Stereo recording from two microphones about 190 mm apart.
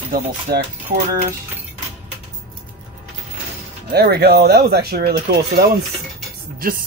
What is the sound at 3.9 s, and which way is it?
A man's voice, 55° right (ahead or behind).